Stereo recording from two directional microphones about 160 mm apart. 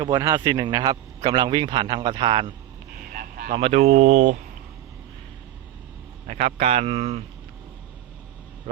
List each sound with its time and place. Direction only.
0.0 s a man's voice: 20° right (ahead or behind)
3.1 s a sound: 60° right (ahead or behind)
3.6 s speech: 45° right (ahead or behind)
6.2 s speech: 45° right (ahead or behind)